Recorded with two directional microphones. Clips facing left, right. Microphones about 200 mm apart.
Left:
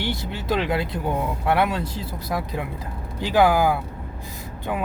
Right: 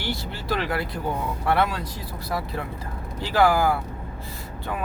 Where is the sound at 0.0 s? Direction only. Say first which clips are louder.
Left 3 dB; 20° left (ahead or behind).